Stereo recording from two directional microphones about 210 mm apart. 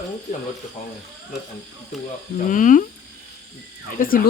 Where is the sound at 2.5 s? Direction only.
40° left (ahead or behind).